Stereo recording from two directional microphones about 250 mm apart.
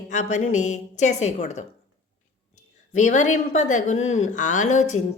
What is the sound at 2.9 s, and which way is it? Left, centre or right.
A woman's voice, left.